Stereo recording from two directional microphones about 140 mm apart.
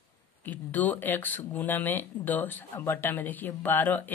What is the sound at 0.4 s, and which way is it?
Speech, 10° left (ahead or behind).